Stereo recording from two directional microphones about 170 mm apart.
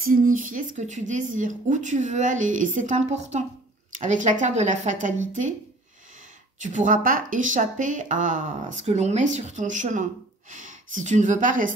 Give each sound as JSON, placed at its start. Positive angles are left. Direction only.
{"t": 0.0, "sound": "speech", "side_deg": -55}
{"t": 6.6, "sound": "speech", "side_deg": -50}